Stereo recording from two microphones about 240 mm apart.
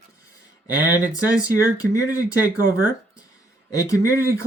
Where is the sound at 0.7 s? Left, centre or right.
Centre.